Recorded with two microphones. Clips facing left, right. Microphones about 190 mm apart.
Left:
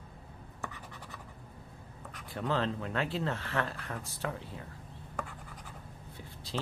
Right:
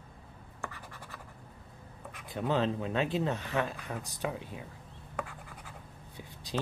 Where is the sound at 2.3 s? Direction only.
15° right (ahead or behind).